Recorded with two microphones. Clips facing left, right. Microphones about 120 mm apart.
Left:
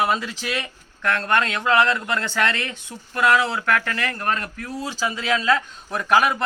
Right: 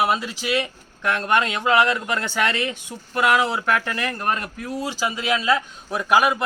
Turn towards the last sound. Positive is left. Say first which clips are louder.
# even
turn(degrees=-10)  # may be behind; listen again after turning